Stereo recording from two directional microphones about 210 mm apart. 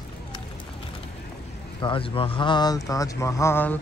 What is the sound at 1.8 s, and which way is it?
Speech, 25° left (ahead or behind).